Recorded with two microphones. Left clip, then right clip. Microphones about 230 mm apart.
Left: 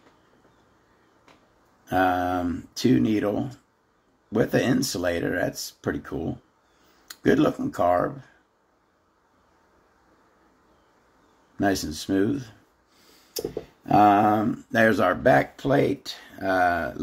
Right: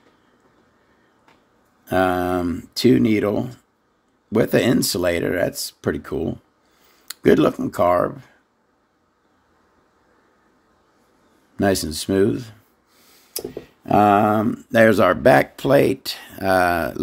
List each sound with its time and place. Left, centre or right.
1.9 s speech: right
11.5 s speech: right
13.8 s speech: right